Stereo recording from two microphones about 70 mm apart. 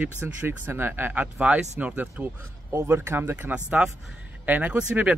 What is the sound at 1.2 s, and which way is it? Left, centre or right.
Speech, centre.